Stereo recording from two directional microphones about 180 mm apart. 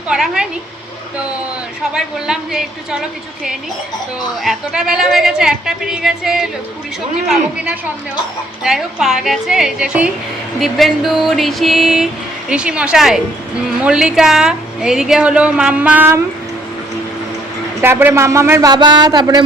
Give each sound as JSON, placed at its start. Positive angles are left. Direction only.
{"t": 0.1, "sound": "a woman's voice", "side_deg": -5}
{"t": 1.9, "sound": "a woman's voice", "side_deg": -5}
{"t": 4.4, "sound": "a woman's voice", "side_deg": 0}
{"t": 17.7, "sound": "speech", "side_deg": -15}